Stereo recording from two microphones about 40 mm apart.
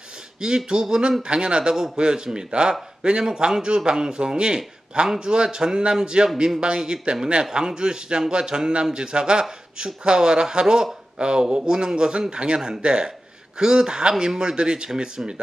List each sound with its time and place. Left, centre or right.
0.4 s a man's voice: centre